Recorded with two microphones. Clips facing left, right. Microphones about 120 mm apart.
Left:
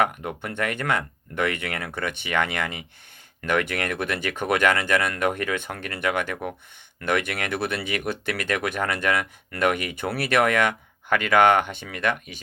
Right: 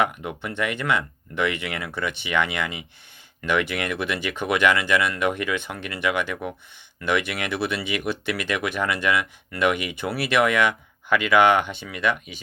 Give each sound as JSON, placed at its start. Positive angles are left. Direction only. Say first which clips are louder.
{"t": 0.0, "sound": "speech", "louder": "even", "side_deg": 45}